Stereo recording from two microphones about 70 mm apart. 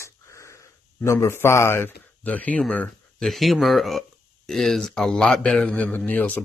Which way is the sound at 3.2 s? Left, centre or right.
Centre.